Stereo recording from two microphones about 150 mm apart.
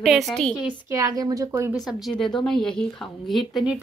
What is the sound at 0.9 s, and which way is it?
Speech, 25° right (ahead or behind).